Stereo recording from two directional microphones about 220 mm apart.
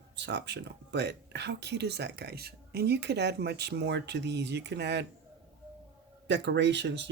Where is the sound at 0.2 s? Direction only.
50° right (ahead or behind).